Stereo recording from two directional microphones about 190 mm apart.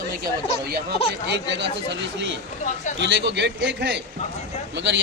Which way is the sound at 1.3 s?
65° right (ahead or behind).